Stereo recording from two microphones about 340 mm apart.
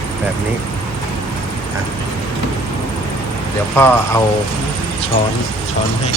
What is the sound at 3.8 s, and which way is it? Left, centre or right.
Speech, centre.